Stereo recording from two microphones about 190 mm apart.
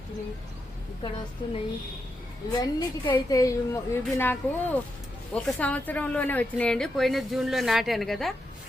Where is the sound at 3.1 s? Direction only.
20° left (ahead or behind).